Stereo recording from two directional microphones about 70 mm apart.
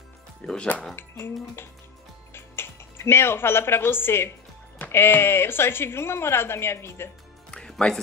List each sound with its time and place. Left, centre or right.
0.4 s speech: centre
0.9 s speech: left
7.5 s music: centre